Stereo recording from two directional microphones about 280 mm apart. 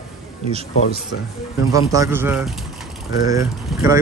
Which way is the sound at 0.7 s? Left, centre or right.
Left.